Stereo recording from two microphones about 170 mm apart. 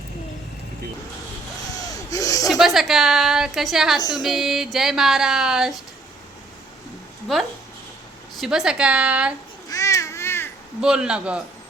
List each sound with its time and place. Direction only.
1.9 s a sound: 20° left (ahead or behind)
2.5 s speech: centre (ahead or behind)
8.4 s speech: 5° right (ahead or behind)
9.6 s babbling: 15° left (ahead or behind)
10.8 s speech: 5° right (ahead or behind)